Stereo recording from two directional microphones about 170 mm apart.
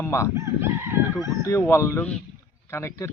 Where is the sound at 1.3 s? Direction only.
15° left (ahead or behind).